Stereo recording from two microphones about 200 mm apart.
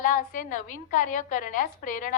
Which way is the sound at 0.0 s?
40° left (ahead or behind).